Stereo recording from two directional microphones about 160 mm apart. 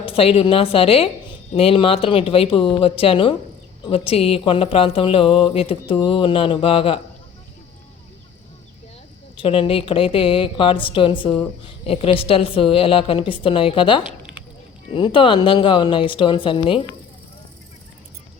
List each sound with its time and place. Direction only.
0.0 s a woman's voice: 35° left (ahead or behind)
9.4 s a woman's voice: 35° left (ahead or behind)